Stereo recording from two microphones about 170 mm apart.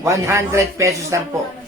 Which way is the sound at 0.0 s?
15° right (ahead or behind).